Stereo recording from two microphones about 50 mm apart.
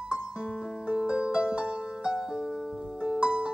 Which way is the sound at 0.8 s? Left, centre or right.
Centre.